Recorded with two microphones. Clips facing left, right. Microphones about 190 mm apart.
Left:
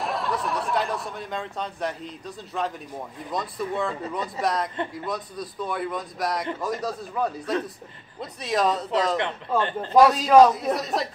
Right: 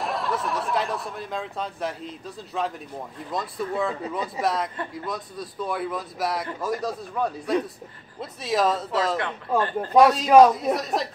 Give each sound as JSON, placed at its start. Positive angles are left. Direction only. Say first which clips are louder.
{"t": 0.0, "sound": "speech", "louder": "even", "side_deg": 0}
{"t": 9.6, "sound": "speech", "louder": "right 1 dB", "side_deg": 25}
{"t": 9.9, "sound": "speech", "louder": "even", "side_deg": 0}